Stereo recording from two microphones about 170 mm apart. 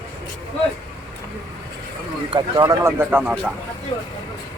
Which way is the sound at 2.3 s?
25° right (ahead or behind).